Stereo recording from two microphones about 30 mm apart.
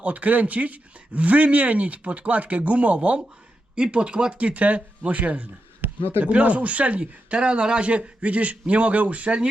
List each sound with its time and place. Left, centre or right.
0.0 s speech: right
3.9 s speech: right
6.2 s speech: right